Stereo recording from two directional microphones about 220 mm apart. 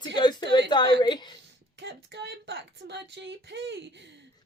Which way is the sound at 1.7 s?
50° right (ahead or behind).